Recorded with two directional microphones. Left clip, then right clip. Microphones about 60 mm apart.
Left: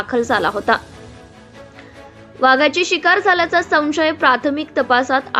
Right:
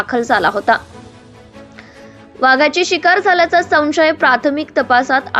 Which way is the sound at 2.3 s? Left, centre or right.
Right.